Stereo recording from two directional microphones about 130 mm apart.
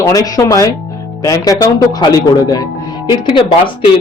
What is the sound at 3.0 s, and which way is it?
Speech, 40° left (ahead or behind).